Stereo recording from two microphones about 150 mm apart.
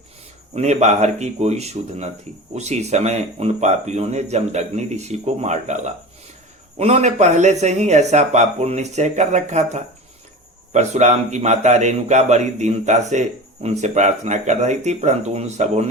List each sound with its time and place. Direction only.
0.5 s a man's voice: 50° right (ahead or behind)